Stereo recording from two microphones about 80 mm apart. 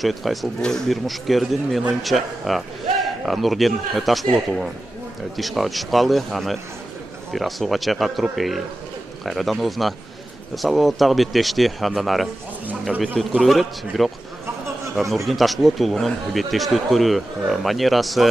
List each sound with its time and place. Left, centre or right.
0.0 s speech: centre